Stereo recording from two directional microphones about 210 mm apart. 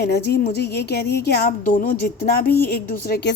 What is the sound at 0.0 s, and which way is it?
Speech, 50° left (ahead or behind).